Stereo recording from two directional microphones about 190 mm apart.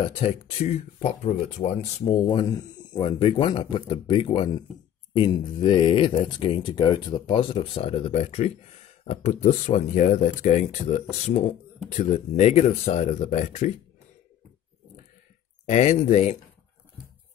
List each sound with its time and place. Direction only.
0.1 s speech: 35° left (ahead or behind)
2.2 s speech: 20° left (ahead or behind); by 13.7 s 40° left (ahead or behind)
15.7 s speech: 40° left (ahead or behind)